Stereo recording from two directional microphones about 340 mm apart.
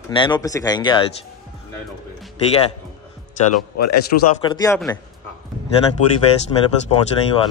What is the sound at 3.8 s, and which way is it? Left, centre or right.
Speech, left.